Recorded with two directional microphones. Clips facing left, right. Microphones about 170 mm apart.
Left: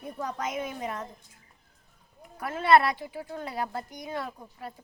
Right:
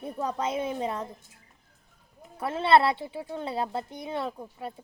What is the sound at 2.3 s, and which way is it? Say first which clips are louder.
A woman's voice: even; 30° right (ahead or behind).